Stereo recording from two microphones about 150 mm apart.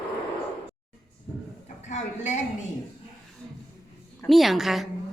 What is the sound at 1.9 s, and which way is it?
Speech, 50° left (ahead or behind).